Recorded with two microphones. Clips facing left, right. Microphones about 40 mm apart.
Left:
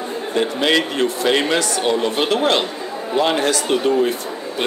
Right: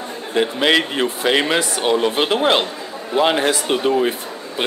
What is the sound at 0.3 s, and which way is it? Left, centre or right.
A man's voice, centre.